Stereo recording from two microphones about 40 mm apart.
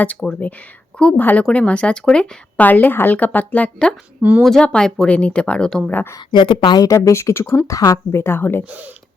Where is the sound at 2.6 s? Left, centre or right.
Left.